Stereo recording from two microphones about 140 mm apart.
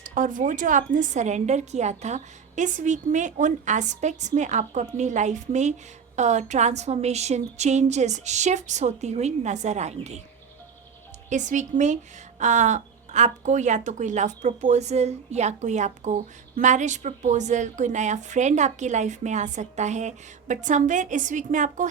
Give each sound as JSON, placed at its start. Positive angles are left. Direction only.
{"t": 0.0, "sound": "speech", "side_deg": -65}
{"t": 11.3, "sound": "speech", "side_deg": -60}